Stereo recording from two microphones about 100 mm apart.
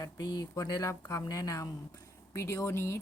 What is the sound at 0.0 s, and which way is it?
A woman's voice, 40° left (ahead or behind).